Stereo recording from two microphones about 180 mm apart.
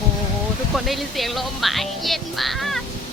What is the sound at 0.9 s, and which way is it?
Speech, centre (ahead or behind).